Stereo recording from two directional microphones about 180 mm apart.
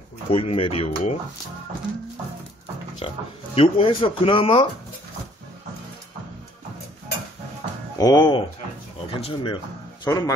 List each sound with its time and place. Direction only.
0.3 s speech: 30° left (ahead or behind)
3.0 s speech: 30° left (ahead or behind)
8.0 s speech: 20° left (ahead or behind)
10.0 s a man's voice: 20° left (ahead or behind)